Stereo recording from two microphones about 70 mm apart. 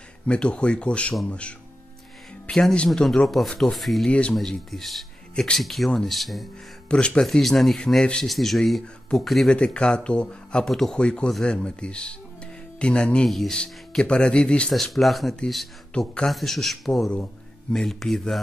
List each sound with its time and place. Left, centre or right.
0.3 s speech: centre
2.9 s speech: centre
4.1 s speech: centre
4.4 s speech: centre
5.3 s speech: centre
5.6 s speech: centre
6.9 s speech: centre
9.5 s speech: centre
13.3 s speech: centre
13.6 s speech: centre
14.7 s speech: centre